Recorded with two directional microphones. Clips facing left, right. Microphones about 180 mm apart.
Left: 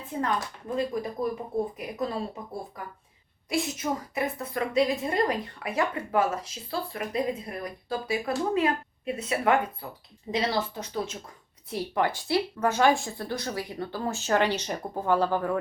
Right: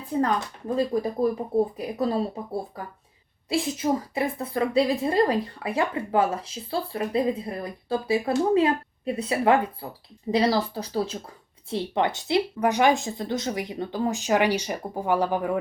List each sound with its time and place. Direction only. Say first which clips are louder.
0.8 s a woman's voice: right 5 dB; 35° right (ahead or behind); by 15.5 s 15° right (ahead or behind)